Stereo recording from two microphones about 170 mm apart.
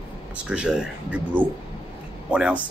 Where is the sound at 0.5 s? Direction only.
5° right (ahead or behind).